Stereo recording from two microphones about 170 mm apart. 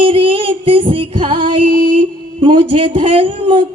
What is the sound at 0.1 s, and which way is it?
Music, 30° right (ahead or behind).